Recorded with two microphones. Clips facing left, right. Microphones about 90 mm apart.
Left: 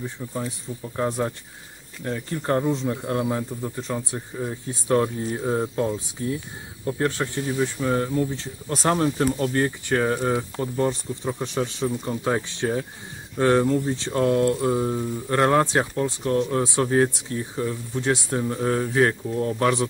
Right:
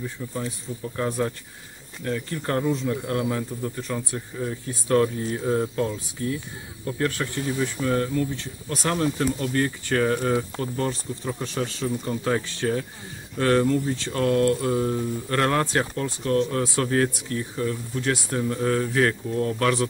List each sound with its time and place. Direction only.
0.2 s speech: 10° left (ahead or behind); by 9.7 s 30° left (ahead or behind)
9.8 s speech: 20° left (ahead or behind)